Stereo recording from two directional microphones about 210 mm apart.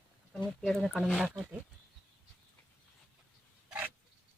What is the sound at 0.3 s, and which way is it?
Speech, centre (ahead or behind).